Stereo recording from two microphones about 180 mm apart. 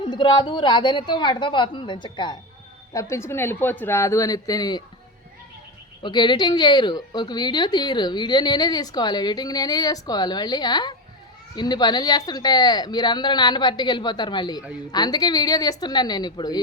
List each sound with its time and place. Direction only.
0.0 s a woman's voice: 25° left (ahead or behind)
6.0 s a woman's voice: 25° left (ahead or behind)